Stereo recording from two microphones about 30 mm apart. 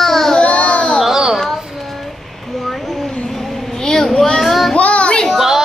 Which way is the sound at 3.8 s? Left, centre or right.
Centre.